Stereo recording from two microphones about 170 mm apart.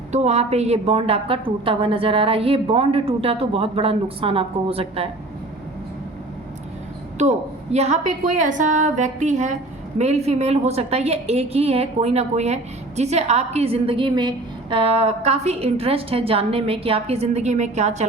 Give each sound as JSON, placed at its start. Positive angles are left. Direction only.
{"t": 0.1, "sound": "a woman's voice", "side_deg": -40}
{"t": 7.2, "sound": "a woman's voice", "side_deg": -40}